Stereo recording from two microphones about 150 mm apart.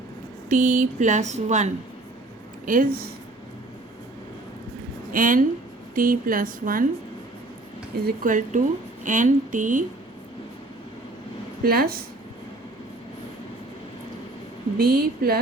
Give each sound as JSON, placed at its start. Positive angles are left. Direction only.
{"t": 0.5, "sound": "a sound", "side_deg": -55}
{"t": 2.6, "sound": "a woman's voice", "side_deg": -70}
{"t": 5.1, "sound": "a woman's voice", "side_deg": -65}
{"t": 8.0, "sound": "speech", "side_deg": -65}
{"t": 11.6, "sound": "speech", "side_deg": -90}
{"t": 14.8, "sound": "speech", "side_deg": -90}